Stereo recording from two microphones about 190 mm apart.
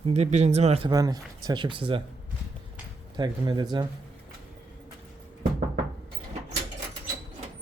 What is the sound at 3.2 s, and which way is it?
Speech, 20° right (ahead or behind).